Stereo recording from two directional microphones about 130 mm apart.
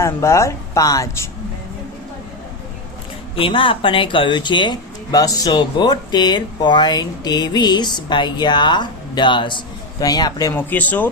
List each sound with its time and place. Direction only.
0.0 s a woman's voice: 20° left (ahead or behind)
3.3 s speech: 45° left (ahead or behind)
10.5 s speech: 15° left (ahead or behind)